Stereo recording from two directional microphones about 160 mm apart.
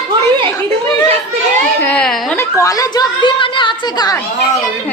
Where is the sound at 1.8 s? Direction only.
10° left (ahead or behind); by 4.1 s 30° left (ahead or behind).